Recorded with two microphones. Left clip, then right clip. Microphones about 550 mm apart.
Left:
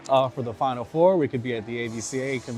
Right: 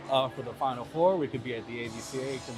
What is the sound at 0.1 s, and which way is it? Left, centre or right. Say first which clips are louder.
Speech: left 7 dB; left.